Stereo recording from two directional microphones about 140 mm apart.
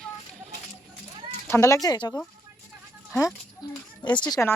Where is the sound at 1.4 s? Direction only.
20° left (ahead or behind).